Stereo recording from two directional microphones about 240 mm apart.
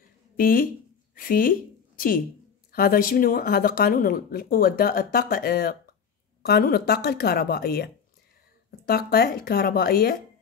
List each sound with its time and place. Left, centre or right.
0.4 s a woman's voice: left